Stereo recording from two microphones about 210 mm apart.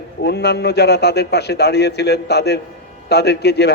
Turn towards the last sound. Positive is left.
turn(degrees=50)  # may be behind; listen again after turning